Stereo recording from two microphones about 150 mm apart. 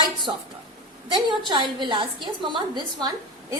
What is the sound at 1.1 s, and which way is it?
A woman's voice, 30° right (ahead or behind).